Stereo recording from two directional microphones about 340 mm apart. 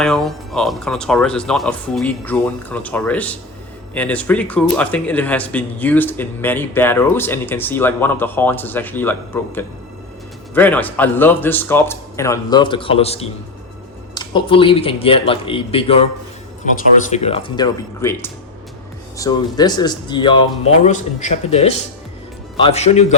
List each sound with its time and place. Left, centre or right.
0.0 s a man's voice: centre